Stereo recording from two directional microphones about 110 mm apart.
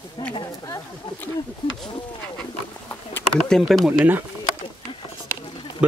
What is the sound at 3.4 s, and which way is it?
Speech, 5° left (ahead or behind).